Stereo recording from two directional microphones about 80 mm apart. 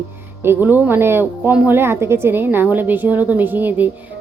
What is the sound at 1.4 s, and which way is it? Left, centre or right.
Speech, centre.